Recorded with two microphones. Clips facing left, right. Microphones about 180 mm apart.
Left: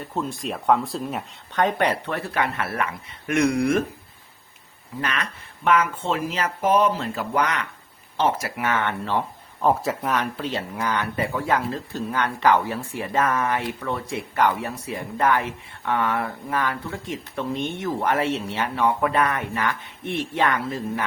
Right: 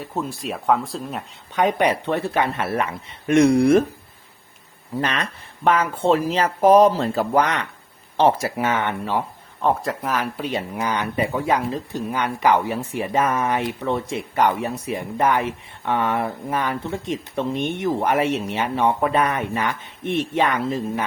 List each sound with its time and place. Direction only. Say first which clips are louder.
0.0 s speech: right 1 dB; 5° right (ahead or behind)
1.5 s speech: right 3 dB; 10° right (ahead or behind); by 3.8 s 35° right (ahead or behind)
4.9 s speech: right 4 dB; 30° right (ahead or behind); by 9.2 s 15° right (ahead or behind)
9.6 s speech: even; centre (ahead or behind); by 21.0 s 20° right (ahead or behind)